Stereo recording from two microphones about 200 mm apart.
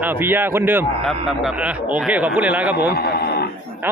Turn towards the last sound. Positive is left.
turn(degrees=50)  # may be behind; listen again after turning